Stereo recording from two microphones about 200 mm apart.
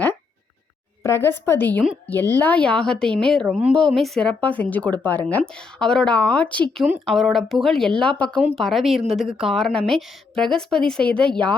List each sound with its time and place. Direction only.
1.0 s a woman's voice: 15° left (ahead or behind)